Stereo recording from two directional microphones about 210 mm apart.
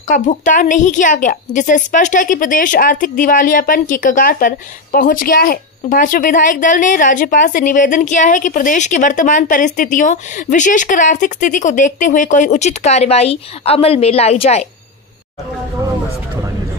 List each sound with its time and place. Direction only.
0.1 s a woman's voice: 35° left (ahead or behind)